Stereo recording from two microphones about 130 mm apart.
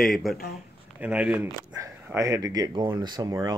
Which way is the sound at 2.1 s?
25° right (ahead or behind).